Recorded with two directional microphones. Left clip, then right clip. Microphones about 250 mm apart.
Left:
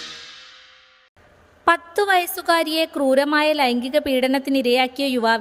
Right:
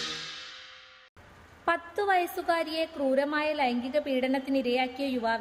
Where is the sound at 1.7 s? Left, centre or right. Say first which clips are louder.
Left 9 dB; left.